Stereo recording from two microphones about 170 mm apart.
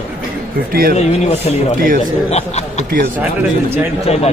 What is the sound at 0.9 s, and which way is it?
Speech, 40° left (ahead or behind).